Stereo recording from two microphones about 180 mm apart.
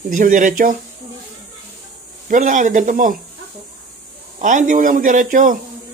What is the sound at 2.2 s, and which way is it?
Speech, 45° right (ahead or behind).